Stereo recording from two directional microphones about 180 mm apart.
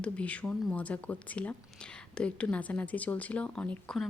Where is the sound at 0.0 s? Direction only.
5° left (ahead or behind).